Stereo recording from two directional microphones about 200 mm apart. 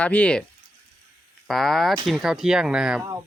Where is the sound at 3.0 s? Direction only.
15° right (ahead or behind).